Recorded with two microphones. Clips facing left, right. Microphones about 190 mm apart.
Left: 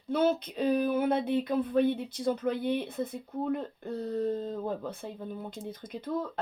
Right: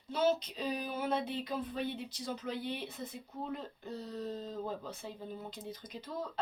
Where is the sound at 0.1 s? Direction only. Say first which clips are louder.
Left 4 dB; 55° left (ahead or behind).